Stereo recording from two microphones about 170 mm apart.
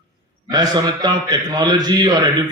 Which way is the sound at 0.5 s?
25° right (ahead or behind).